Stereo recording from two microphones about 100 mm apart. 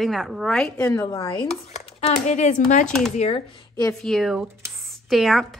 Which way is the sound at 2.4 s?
90° left.